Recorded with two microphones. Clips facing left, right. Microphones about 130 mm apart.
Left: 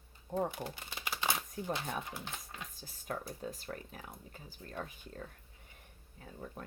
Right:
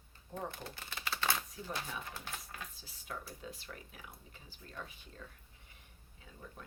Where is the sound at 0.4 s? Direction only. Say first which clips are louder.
Left 5 dB; 15° left (ahead or behind).